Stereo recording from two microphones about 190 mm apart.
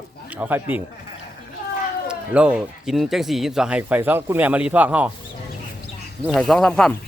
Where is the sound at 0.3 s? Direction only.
10° right (ahead or behind).